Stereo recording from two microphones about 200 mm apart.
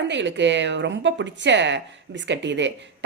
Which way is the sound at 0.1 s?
65° right (ahead or behind).